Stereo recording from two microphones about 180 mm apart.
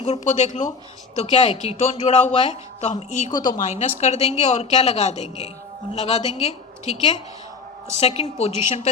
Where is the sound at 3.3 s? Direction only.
25° left (ahead or behind).